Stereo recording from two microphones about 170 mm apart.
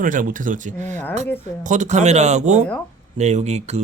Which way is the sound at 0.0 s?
50° right (ahead or behind).